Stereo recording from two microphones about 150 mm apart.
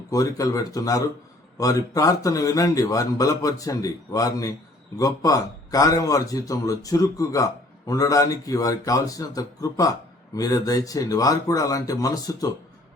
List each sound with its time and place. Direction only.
0.1 s a man's voice: 25° left (ahead or behind)